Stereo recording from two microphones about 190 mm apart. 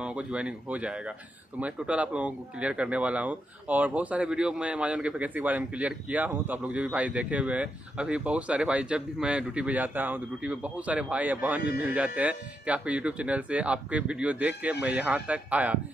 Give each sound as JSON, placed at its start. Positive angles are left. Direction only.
{"t": 0.0, "sound": "speech", "side_deg": -5}